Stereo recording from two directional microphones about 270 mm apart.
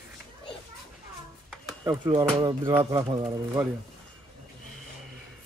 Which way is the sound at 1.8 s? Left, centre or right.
Centre.